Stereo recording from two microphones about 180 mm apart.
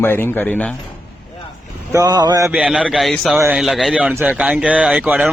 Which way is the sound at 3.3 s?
10° right (ahead or behind).